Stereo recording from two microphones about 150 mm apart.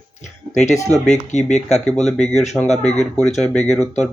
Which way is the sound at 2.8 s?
50° left (ahead or behind).